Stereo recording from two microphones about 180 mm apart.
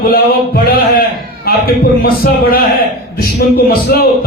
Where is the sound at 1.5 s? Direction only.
55° left (ahead or behind).